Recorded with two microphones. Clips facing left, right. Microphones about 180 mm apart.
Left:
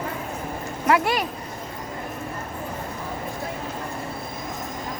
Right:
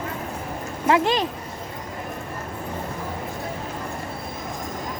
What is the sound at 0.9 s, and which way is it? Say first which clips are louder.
Speech: right 1 dB; 25° right (ahead or behind).